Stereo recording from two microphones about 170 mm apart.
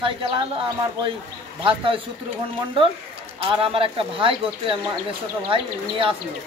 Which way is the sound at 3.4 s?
35° right (ahead or behind).